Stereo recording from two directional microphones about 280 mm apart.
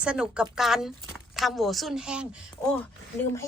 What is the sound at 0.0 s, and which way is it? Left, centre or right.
A woman's voice, centre.